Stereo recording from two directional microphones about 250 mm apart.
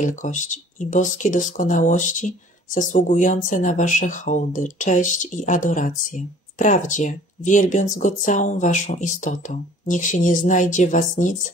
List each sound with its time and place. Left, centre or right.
0.0 s speech: left